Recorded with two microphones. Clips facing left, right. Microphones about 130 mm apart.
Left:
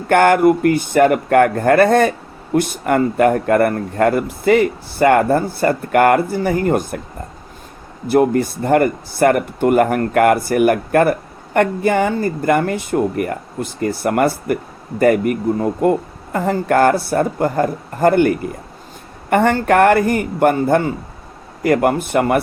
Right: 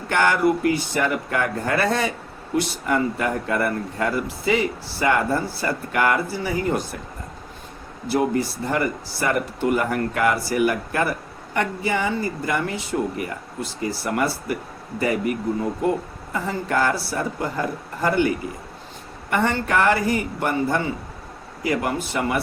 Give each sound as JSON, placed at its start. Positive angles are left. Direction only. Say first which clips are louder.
{"t": 0.1, "sound": "speech", "louder": "left 8 dB", "side_deg": 55}
{"t": 8.0, "sound": "speech", "louder": "left 7 dB", "side_deg": 55}